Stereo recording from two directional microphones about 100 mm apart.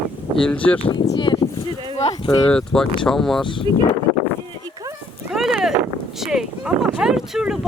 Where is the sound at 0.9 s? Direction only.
65° left (ahead or behind).